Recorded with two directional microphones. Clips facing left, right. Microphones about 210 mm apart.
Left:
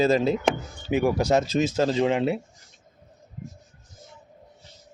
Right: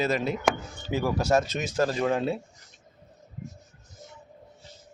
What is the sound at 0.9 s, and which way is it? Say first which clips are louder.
Speech: left 3 dB; 15° left (ahead or behind).